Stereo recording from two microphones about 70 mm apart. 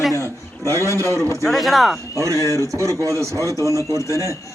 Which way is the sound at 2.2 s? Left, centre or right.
Right.